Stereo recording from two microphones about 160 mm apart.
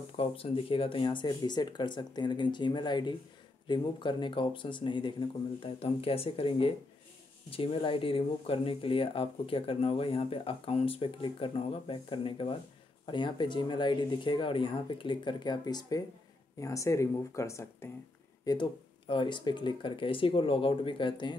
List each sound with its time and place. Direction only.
0.2 s speech: 35° left (ahead or behind)